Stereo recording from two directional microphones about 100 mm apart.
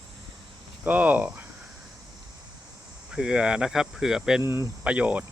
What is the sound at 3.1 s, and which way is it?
Speech, 10° right (ahead or behind).